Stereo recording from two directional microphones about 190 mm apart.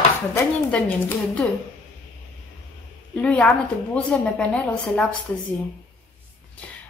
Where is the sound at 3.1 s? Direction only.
5° left (ahead or behind).